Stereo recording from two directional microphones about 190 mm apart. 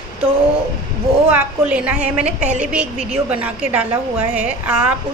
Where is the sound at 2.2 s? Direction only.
40° right (ahead or behind).